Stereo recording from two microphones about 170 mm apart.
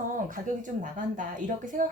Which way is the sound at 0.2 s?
50° right (ahead or behind).